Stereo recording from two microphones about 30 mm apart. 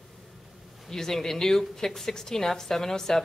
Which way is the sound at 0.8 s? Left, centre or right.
Centre.